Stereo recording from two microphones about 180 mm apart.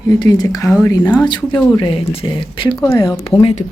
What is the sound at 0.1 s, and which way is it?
Speech, 20° left (ahead or behind).